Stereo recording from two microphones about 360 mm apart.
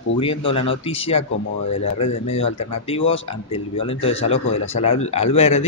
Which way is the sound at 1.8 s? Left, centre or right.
Left.